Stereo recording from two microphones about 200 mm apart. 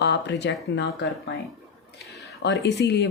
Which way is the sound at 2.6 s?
55° left (ahead or behind).